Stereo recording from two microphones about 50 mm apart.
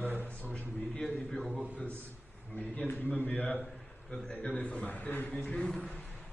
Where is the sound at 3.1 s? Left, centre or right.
Left.